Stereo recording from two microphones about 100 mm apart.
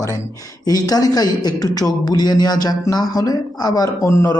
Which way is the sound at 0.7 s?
40° left (ahead or behind).